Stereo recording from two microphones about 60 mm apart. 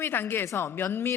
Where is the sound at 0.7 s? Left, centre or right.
Left.